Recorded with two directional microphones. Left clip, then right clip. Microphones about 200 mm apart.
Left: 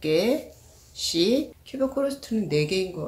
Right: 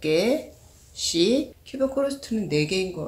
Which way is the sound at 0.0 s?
Centre (ahead or behind).